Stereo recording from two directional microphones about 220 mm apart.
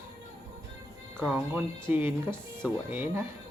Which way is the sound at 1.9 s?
10° right (ahead or behind).